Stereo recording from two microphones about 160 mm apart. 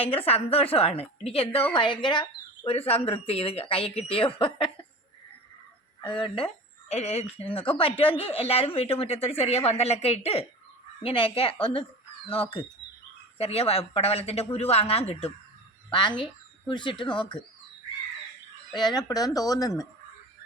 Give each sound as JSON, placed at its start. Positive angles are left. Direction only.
{"t": 0.0, "sound": "speech", "side_deg": 40}
{"t": 6.0, "sound": "speech", "side_deg": 30}
{"t": 15.9, "sound": "speech", "side_deg": 30}
{"t": 18.7, "sound": "speech", "side_deg": 25}